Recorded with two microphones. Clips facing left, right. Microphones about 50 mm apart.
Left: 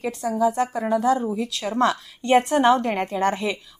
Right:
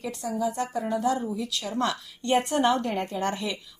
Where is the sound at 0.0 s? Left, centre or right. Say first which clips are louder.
Left 7 dB; left.